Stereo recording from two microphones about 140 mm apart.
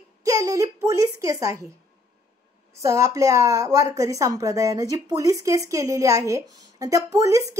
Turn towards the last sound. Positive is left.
turn(degrees=-20)  # may be behind; listen again after turning